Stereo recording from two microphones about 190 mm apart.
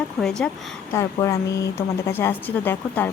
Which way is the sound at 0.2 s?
Centre (ahead or behind).